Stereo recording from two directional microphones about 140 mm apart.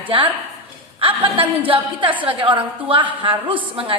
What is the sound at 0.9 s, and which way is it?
A woman's voice, 40° right (ahead or behind).